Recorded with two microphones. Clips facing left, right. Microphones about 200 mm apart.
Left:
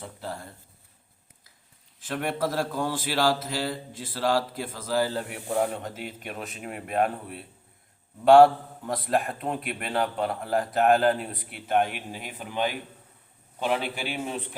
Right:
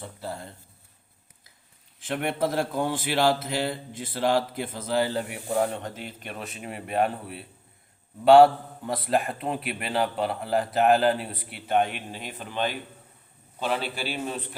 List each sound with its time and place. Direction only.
0.0 s speech: 5° right (ahead or behind)
2.0 s speech: 20° right (ahead or behind)
5.5 s a man's voice: 5° left (ahead or behind)